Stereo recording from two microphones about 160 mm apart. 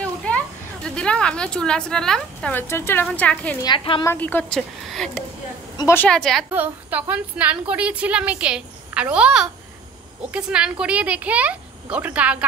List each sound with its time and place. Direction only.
0.0 s a sound: 5° left (ahead or behind)
0.8 s a woman's voice: 5° left (ahead or behind)
3.6 s a woman's voice: 30° left (ahead or behind)
4.0 s a woman's voice: 15° left (ahead or behind)
5.8 s a woman's voice: 15° left (ahead or behind)
6.0 s a woman's voice: 5° left (ahead or behind)
6.5 s a woman's voice: 10° right (ahead or behind)